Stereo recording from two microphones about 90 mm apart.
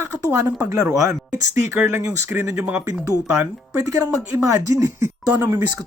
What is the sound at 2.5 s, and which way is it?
Speech, 15° right (ahead or behind).